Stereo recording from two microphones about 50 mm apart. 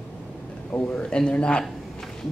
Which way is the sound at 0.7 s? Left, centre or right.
Left.